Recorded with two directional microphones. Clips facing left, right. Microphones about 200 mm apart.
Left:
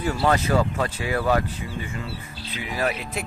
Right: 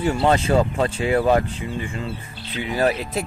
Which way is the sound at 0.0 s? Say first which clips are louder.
Right 3 dB; 25° right (ahead or behind).